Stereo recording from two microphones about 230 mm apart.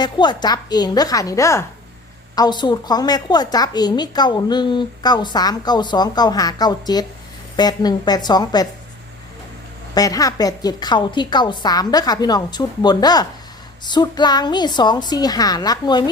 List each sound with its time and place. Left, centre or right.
0.0 s a woman's voice: centre
9.9 s a woman's voice: centre